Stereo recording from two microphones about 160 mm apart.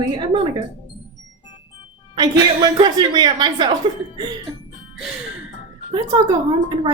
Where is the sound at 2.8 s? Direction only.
25° right (ahead or behind).